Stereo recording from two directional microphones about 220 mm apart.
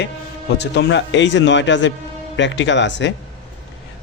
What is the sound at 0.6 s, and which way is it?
Speech, 50° left (ahead or behind).